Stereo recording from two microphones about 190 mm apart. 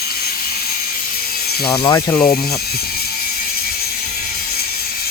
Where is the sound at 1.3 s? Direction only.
55° left (ahead or behind).